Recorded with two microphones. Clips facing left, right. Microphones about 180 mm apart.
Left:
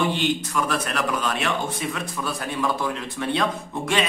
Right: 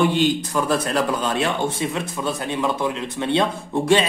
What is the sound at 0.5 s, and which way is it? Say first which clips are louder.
Speech: right 5 dB; 30° right (ahead or behind).